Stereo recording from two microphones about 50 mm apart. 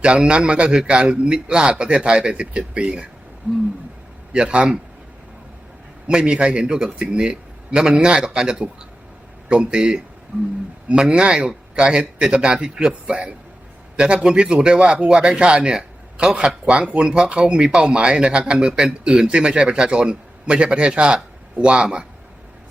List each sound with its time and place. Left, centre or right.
0.0 s a man's voice: right
4.3 s a man's voice: right
6.1 s a man's voice: centre